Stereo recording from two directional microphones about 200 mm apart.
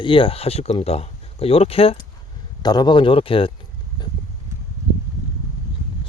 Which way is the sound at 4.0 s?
20° left (ahead or behind).